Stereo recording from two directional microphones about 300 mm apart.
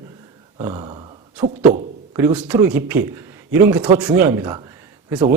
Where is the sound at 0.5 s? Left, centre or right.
Centre.